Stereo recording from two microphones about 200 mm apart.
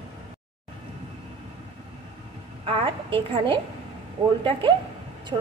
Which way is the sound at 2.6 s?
25° right (ahead or behind).